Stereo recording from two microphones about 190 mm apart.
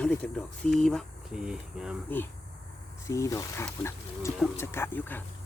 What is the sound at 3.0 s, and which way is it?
Speech, 15° left (ahead or behind).